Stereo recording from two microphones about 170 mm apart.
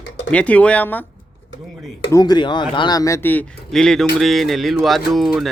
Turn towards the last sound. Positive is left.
turn(degrees=0)  # may be behind; listen again after turning